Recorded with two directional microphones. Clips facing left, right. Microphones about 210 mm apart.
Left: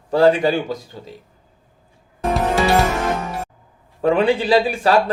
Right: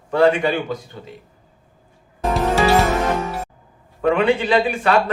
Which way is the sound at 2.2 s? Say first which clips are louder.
Even; centre (ahead or behind).